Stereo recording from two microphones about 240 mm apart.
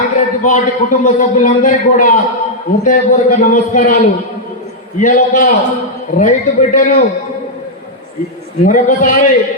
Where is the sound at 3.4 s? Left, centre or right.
Left.